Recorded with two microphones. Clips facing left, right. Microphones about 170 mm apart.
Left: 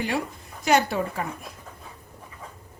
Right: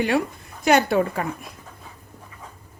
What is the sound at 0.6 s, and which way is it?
Speech, 65° right (ahead or behind).